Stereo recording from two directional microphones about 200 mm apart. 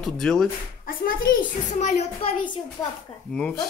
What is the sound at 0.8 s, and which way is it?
A child's voice, 45° left (ahead or behind).